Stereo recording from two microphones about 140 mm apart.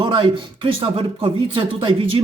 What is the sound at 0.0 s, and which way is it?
Speech, 35° right (ahead or behind).